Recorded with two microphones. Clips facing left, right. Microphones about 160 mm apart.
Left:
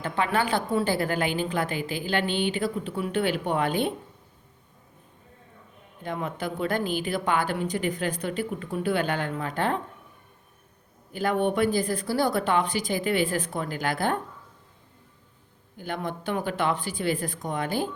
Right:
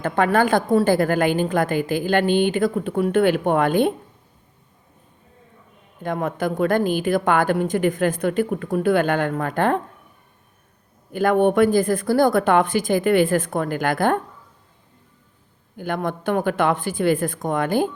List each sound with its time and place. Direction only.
0.0 s a woman's voice: 50° right (ahead or behind)
6.0 s a woman's voice: 50° right (ahead or behind)
11.1 s a woman's voice: 50° right (ahead or behind)
15.8 s a woman's voice: 50° right (ahead or behind)